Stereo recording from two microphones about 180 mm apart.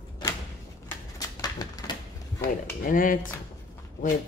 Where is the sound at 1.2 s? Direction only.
20° left (ahead or behind).